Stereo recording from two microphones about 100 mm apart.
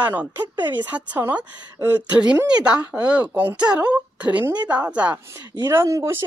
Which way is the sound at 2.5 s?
10° right (ahead or behind).